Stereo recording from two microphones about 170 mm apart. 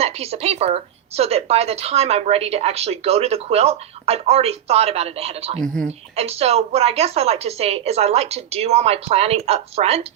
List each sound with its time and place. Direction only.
0.0 s speech: 35° right (ahead or behind)
5.5 s speech: 5° left (ahead or behind)
6.1 s speech: 35° right (ahead or behind)